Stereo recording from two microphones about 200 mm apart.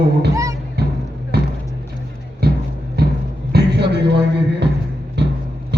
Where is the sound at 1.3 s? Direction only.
55° right (ahead or behind).